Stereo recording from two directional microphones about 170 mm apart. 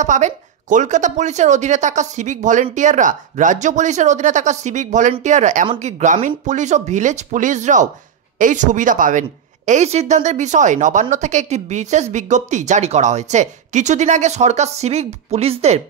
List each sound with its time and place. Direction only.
0.0 s a woman's voice: 45° right (ahead or behind)